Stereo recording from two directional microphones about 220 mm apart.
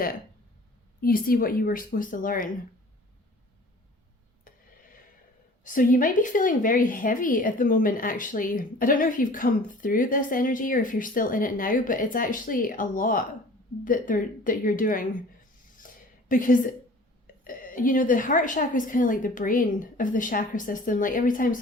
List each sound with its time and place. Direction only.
1.0 s speech: 40° left (ahead or behind)
4.5 s a sound: 40° left (ahead or behind)
5.6 s speech: 40° left (ahead or behind)
16.3 s speech: 35° left (ahead or behind)